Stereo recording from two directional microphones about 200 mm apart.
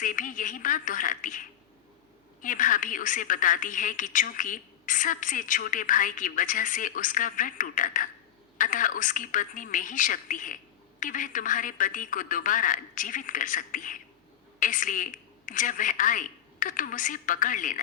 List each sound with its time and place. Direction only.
0.0 s a woman's voice: 40° left (ahead or behind)